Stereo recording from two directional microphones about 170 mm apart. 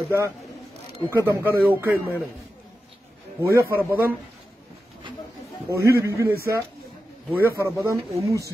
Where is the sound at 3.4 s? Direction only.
15° right (ahead or behind).